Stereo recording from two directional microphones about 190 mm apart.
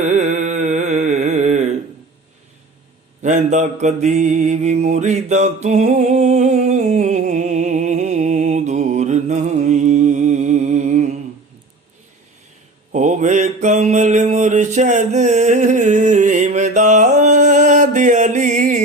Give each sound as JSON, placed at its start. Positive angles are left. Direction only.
{"t": 0.0, "sound": "music", "side_deg": -40}
{"t": 3.2, "sound": "mantra", "side_deg": -40}
{"t": 12.9, "sound": "mantra", "side_deg": -40}